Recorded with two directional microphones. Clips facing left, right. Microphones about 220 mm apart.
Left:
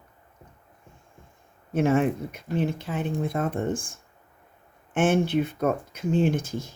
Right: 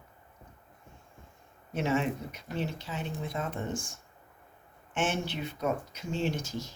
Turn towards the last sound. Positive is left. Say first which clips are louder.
# left 7 dB
turn(degrees=55)  # may be behind; listen again after turning